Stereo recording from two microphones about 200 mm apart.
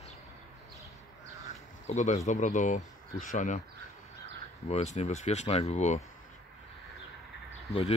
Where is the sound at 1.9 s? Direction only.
35° left (ahead or behind).